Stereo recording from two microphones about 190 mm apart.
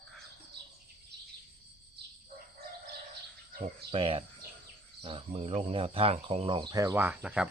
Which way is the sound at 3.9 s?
30° right (ahead or behind).